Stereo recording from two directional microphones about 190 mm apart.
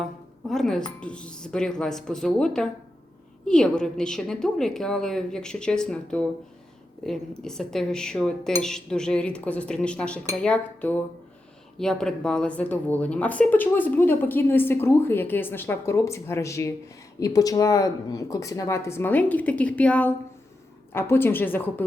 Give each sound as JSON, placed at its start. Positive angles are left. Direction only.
{"t": 0.0, "sound": "a woman's voice", "side_deg": 0}